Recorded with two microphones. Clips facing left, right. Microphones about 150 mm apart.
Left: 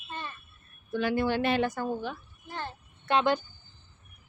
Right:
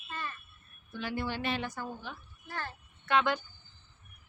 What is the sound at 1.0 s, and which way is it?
Speech, 70° left (ahead or behind).